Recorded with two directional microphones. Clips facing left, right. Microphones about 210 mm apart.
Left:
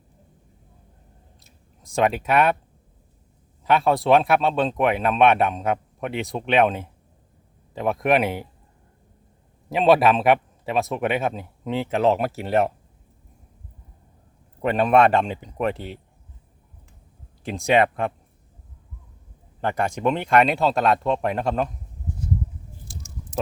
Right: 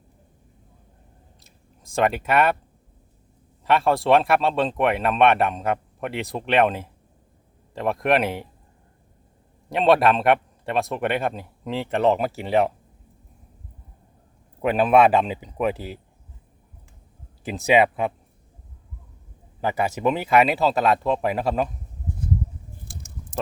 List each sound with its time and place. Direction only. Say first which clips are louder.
1.5 s speech: even; centre (ahead or behind)
3.6 s speech: even; centre (ahead or behind)
9.6 s speech: left 1 dB; centre (ahead or behind)
14.6 s speech: right 1 dB; 5° right (ahead or behind)
17.4 s speech: right 1 dB; 5° right (ahead or behind)
19.6 s speech: even; 5° right (ahead or behind)
22.9 s chewing: left 2 dB; 55° right (ahead or behind)